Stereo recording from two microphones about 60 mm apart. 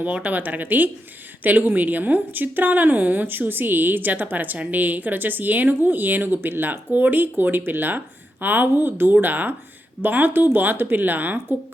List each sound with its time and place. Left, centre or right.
0.0 s speech: right